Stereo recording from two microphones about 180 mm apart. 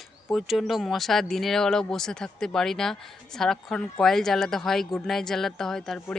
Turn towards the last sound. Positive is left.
turn(degrees=0)  # may be behind; listen again after turning